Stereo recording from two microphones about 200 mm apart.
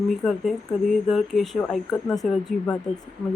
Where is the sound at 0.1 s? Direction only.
Centre (ahead or behind).